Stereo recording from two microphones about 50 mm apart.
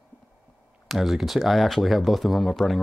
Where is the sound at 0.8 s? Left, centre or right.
Centre.